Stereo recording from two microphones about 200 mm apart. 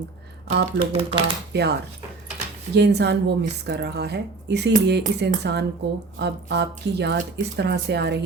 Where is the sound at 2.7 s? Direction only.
55° right (ahead or behind).